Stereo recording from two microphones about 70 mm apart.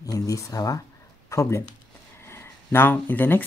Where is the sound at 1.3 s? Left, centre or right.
Left.